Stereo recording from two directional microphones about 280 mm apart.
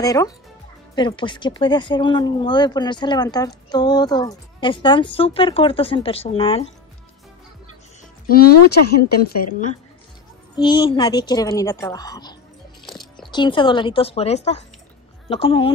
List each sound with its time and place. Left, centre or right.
0.0 s speech: centre
8.3 s speech: left
10.5 s speech: centre
12.9 s a sound: centre
13.3 s speech: centre